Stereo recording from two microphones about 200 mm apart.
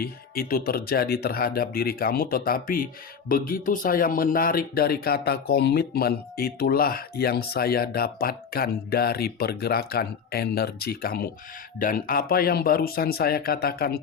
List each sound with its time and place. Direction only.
0.0 s speech: 50° left (ahead or behind)